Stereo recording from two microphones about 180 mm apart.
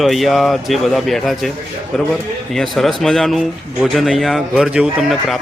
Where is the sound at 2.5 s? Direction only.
Centre (ahead or behind).